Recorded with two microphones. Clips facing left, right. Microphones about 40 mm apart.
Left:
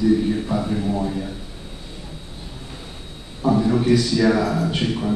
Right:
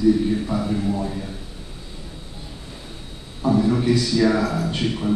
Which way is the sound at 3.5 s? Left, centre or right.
Centre.